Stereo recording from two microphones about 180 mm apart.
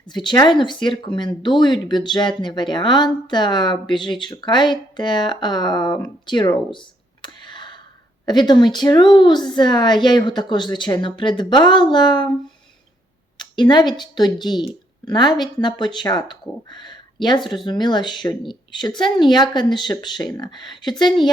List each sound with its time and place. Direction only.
0.0 s speech: 25° left (ahead or behind)
6.2 s a sound: 25° left (ahead or behind)
8.2 s speech: 25° left (ahead or behind)
13.3 s speech: 25° left (ahead or behind)